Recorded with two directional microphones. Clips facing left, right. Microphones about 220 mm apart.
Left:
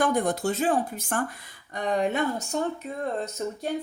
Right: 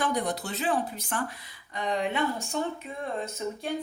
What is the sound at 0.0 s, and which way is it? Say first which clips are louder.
A woman's voice: left 5 dB; 50° left (ahead or behind).